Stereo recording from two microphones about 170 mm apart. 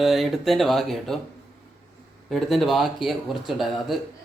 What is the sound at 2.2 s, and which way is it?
Speech, centre (ahead or behind).